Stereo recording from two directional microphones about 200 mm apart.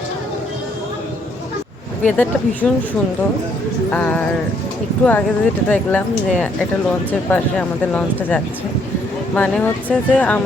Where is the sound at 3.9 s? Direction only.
5° left (ahead or behind).